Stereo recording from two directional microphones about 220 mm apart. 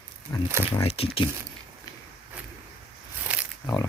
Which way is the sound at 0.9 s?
25° left (ahead or behind).